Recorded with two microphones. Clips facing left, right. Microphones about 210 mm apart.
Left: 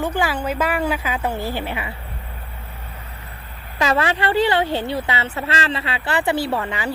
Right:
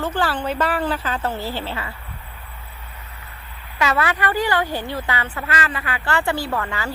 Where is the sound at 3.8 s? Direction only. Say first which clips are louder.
Left 2 dB; 30° left (ahead or behind).